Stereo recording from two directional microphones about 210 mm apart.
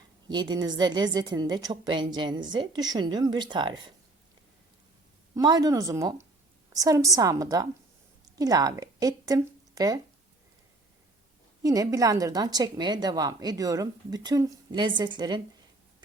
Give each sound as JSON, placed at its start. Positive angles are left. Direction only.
{"t": 0.3, "sound": "a woman's voice", "side_deg": -20}
{"t": 5.3, "sound": "speech", "side_deg": -20}
{"t": 11.6, "sound": "a woman's voice", "side_deg": -15}